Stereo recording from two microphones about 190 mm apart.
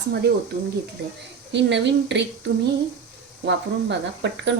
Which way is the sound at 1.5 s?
65° right (ahead or behind).